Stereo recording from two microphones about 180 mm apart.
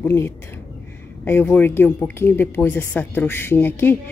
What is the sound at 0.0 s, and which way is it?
A woman's voice, 15° left (ahead or behind).